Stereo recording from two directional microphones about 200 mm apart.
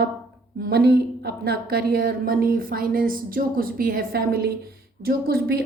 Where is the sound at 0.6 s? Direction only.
50° right (ahead or behind).